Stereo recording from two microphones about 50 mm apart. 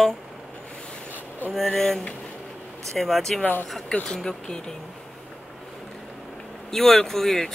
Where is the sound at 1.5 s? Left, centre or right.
Centre.